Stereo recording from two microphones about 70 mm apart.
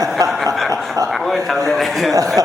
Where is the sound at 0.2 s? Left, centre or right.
Right.